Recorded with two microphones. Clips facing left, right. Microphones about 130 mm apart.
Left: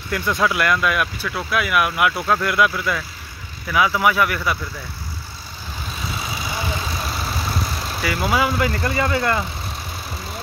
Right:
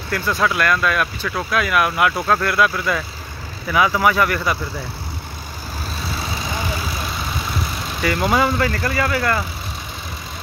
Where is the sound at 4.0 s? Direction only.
5° left (ahead or behind).